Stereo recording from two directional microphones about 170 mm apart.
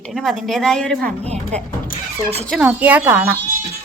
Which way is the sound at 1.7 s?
50° left (ahead or behind).